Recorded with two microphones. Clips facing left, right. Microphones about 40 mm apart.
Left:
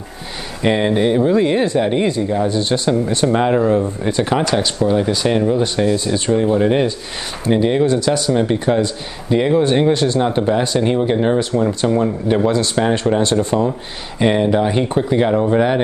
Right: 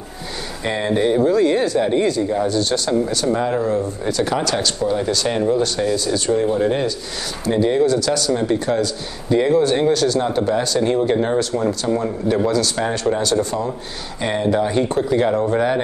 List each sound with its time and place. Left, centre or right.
0.7 s speech: left
5.8 s speech: left
11.8 s speech: left
12.4 s speech: left